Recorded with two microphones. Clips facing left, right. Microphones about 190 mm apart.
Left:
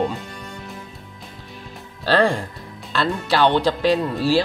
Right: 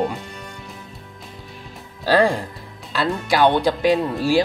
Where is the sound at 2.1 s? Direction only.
10° right (ahead or behind).